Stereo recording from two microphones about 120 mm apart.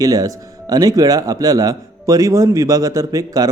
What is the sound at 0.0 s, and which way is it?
A man's voice, 30° right (ahead or behind).